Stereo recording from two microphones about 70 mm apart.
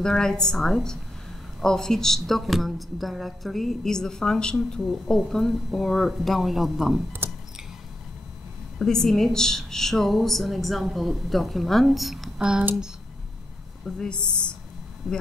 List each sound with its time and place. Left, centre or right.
0.0 s a woman's voice: centre
7.2 s a sound: right
8.7 s a woman's voice: centre
12.4 s speech: centre
13.8 s a woman's voice: centre